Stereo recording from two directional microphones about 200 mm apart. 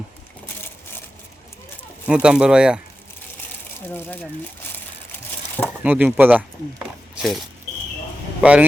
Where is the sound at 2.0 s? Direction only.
5° right (ahead or behind).